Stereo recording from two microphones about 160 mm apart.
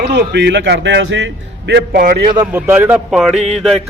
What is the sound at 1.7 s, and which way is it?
Speech, 75° right (ahead or behind).